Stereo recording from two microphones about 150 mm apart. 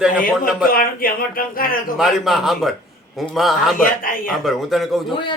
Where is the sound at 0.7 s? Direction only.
75° left (ahead or behind).